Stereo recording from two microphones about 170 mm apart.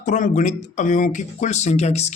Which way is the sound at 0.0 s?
45° left (ahead or behind).